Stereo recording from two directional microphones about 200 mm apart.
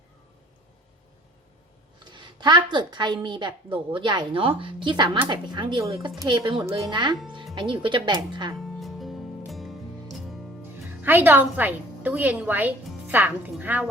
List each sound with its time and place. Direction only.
2.0 s a woman's voice: 20° right (ahead or behind)
8.5 s music: centre (ahead or behind)
11.0 s a woman's voice: 10° right (ahead or behind)